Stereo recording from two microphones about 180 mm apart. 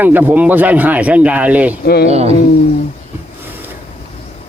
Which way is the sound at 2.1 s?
35° right (ahead or behind).